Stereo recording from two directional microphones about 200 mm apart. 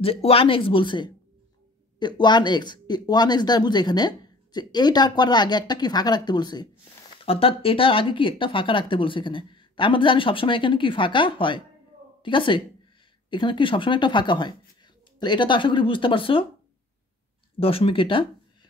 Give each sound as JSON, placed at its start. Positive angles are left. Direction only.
{"t": 0.0, "sound": "a woman's voice", "side_deg": 30}
{"t": 17.6, "sound": "speech", "side_deg": 30}